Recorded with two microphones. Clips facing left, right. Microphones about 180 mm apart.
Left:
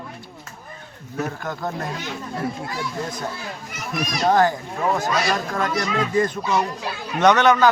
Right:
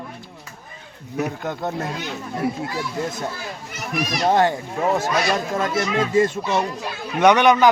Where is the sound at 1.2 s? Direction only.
20° right (ahead or behind).